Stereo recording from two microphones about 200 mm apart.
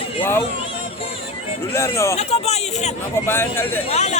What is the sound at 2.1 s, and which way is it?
Speech, 30° left (ahead or behind).